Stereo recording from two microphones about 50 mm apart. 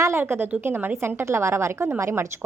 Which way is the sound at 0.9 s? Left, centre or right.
Right.